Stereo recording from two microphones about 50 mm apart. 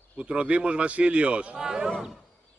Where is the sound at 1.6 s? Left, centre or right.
Centre.